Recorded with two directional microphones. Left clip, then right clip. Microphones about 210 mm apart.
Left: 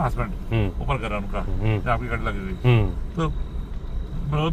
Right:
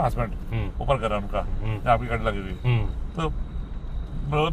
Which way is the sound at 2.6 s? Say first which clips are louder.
Left 8 dB; 45° left (ahead or behind).